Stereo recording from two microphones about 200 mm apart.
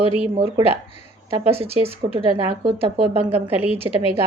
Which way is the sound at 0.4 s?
30° right (ahead or behind).